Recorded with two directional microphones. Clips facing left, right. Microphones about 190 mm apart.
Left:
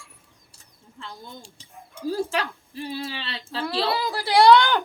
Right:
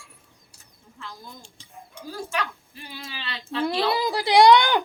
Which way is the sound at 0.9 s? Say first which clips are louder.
Left 2 dB; 30° left (ahead or behind).